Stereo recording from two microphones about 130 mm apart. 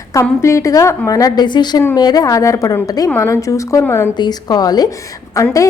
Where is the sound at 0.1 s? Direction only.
20° left (ahead or behind).